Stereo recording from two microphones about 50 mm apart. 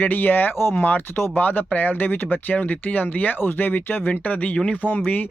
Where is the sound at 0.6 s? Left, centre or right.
Left.